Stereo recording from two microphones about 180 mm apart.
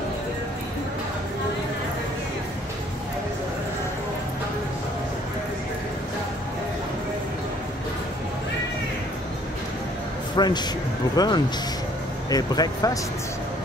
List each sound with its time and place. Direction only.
10.3 s speech: 25° left (ahead or behind)